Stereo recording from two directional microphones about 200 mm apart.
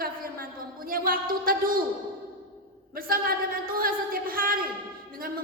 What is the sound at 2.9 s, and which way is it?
A woman's voice, 45° right (ahead or behind).